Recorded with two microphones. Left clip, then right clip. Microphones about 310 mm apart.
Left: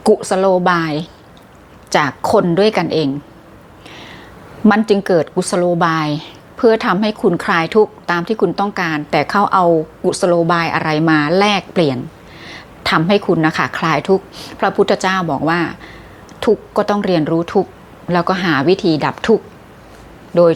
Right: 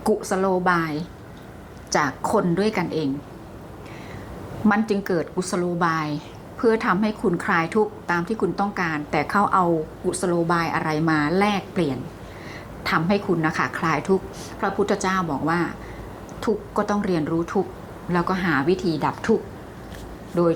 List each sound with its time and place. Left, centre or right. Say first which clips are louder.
0.0 s a woman's voice: left 9 dB; left
4.7 s a woman's voice: left 10 dB; left